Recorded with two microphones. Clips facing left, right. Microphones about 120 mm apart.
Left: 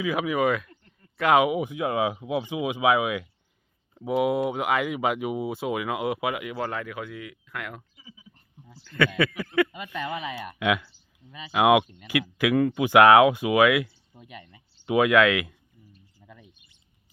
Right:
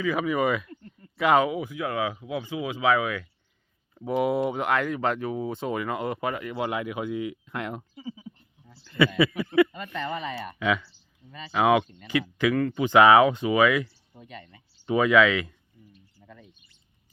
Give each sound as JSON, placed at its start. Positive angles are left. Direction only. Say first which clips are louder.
{"t": 0.0, "sound": "speech", "louder": "even", "side_deg": 5}
{"t": 1.4, "sound": "speech", "louder": "left 2 dB", "side_deg": 15}
{"t": 3.9, "sound": "speech", "louder": "left 1 dB", "side_deg": 0}
{"t": 6.6, "sound": "speech", "louder": "right 2 dB", "side_deg": -15}
{"t": 7.9, "sound": "a sound", "louder": "right 14 dB", "side_deg": -45}
{"t": 9.0, "sound": "speech", "louder": "right 2 dB", "side_deg": -5}
{"t": 16.2, "sound": "bird", "louder": "right 1 dB", "side_deg": 5}